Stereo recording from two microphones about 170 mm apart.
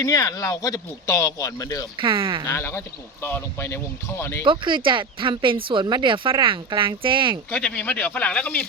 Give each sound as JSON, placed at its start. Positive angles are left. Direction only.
{"t": 0.0, "sound": "speech", "side_deg": 20}
{"t": 2.0, "sound": "speech", "side_deg": -30}
{"t": 2.5, "sound": "speech", "side_deg": 15}
{"t": 4.4, "sound": "speech", "side_deg": -30}
{"t": 7.5, "sound": "speech", "side_deg": 5}